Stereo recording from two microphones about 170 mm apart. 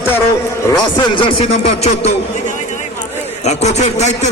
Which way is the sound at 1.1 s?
30° left (ahead or behind).